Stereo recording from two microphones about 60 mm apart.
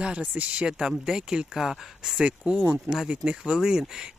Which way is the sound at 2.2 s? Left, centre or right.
Right.